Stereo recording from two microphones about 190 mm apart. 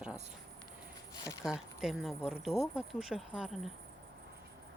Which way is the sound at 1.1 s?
20° left (ahead or behind).